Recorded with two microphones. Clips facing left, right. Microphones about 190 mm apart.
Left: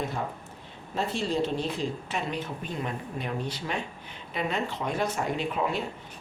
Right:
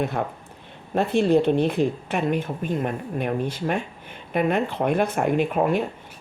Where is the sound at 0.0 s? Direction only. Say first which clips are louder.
Right 6 dB; 60° right (ahead or behind).